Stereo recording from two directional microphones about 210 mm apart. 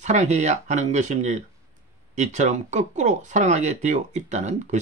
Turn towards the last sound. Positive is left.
turn(degrees=-35)  # may be behind; listen again after turning